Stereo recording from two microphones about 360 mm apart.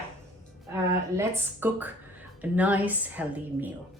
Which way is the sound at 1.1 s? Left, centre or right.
Centre.